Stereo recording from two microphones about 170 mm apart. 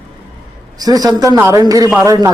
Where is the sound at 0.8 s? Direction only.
20° right (ahead or behind).